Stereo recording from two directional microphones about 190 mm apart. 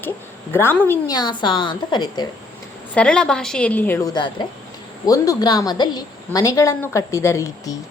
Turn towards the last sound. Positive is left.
turn(degrees=15)  # may be behind; listen again after turning